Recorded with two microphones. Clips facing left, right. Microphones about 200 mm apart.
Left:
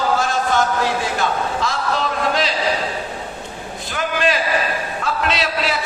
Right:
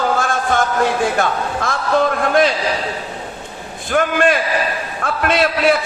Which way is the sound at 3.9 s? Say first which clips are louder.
Right 5 dB; 55° right (ahead or behind).